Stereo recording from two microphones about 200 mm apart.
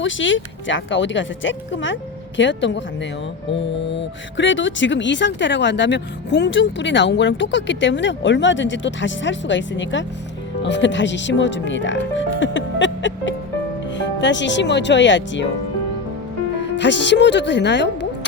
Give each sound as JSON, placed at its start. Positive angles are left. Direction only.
{"t": 0.0, "sound": "speech", "side_deg": 70}
{"t": 16.7, "sound": "speech", "side_deg": 60}